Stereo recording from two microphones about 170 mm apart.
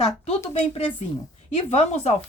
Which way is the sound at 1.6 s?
40° left (ahead or behind).